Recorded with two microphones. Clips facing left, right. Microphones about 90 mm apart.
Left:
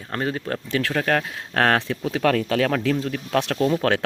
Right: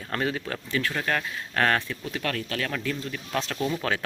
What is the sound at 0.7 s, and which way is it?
Speech, 65° left (ahead or behind).